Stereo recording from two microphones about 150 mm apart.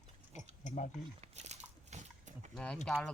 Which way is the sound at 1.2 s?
50° right (ahead or behind).